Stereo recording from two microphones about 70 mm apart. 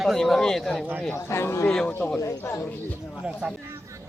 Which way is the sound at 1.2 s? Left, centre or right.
Left.